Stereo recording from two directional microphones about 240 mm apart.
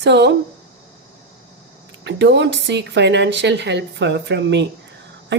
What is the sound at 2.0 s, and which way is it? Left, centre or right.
Speech, right.